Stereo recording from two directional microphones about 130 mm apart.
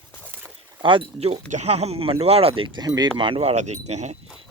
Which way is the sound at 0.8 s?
40° right (ahead or behind).